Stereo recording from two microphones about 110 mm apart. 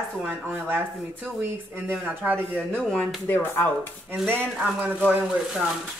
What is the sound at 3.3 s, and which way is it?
Speech, 20° left (ahead or behind).